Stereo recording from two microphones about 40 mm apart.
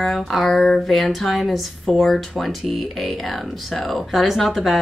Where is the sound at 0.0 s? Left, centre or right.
Centre.